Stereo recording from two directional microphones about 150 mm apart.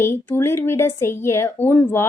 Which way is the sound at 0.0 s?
15° left (ahead or behind).